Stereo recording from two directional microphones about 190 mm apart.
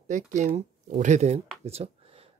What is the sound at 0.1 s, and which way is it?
Speech, 40° right (ahead or behind).